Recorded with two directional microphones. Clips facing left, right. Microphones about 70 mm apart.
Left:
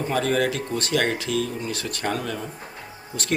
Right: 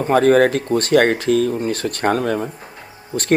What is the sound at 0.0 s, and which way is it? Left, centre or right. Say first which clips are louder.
Speech: right 10 dB; right.